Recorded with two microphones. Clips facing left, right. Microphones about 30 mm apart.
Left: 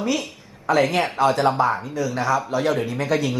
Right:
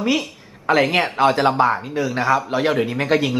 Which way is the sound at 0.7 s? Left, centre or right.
Right.